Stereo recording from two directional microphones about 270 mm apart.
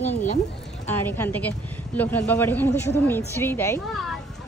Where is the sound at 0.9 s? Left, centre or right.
Centre.